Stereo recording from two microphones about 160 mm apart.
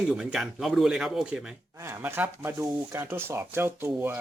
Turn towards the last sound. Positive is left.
turn(degrees=-15)  # may be behind; listen again after turning